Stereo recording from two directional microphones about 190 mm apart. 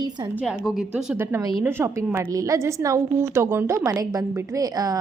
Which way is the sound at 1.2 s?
15° right (ahead or behind).